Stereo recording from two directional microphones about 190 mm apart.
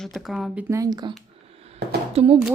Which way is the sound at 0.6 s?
15° right (ahead or behind).